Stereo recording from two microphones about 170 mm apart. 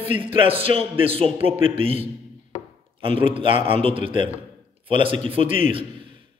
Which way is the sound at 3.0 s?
30° right (ahead or behind).